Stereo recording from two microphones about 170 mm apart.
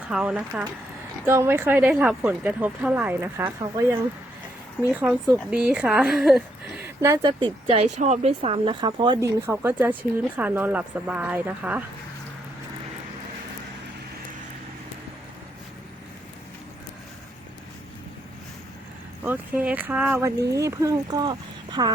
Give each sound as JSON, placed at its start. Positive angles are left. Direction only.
{"t": 0.1, "sound": "speech", "side_deg": -5}
{"t": 6.8, "sound": "speech", "side_deg": -15}
{"t": 9.5, "sound": "speech", "side_deg": -15}
{"t": 19.2, "sound": "speech", "side_deg": -10}